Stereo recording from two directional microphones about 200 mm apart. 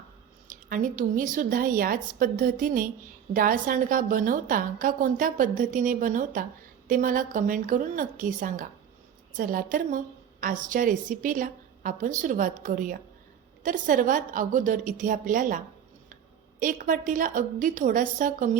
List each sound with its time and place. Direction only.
0.4 s a woman's voice: 40° right (ahead or behind)